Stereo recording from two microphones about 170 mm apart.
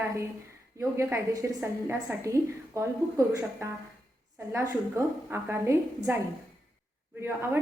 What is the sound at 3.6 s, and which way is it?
A woman's voice, 15° right (ahead or behind).